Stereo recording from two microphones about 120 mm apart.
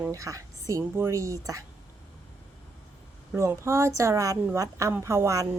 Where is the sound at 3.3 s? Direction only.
25° right (ahead or behind).